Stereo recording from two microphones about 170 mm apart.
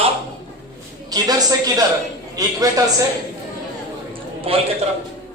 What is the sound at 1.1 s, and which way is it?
A woman's voice, 20° right (ahead or behind).